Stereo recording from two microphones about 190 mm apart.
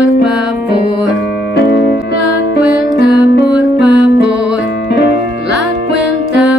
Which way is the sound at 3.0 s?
Centre (ahead or behind).